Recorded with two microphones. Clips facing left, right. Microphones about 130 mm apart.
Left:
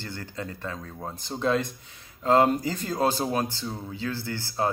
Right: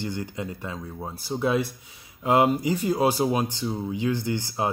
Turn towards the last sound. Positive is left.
turn(degrees=-15)  # may be behind; listen again after turning